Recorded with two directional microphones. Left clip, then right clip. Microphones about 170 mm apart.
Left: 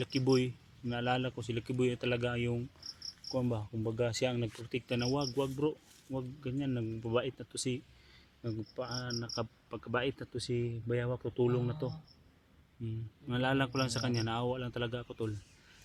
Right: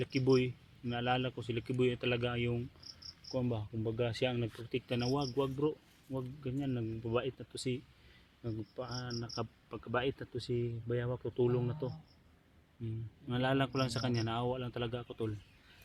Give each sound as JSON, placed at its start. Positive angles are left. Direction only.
{"t": 0.0, "sound": "speech", "side_deg": 15}
{"t": 4.7, "sound": "speech", "side_deg": 10}
{"t": 13.2, "sound": "speech", "side_deg": 10}